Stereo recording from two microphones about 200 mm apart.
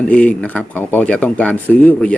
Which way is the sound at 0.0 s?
5° left (ahead or behind).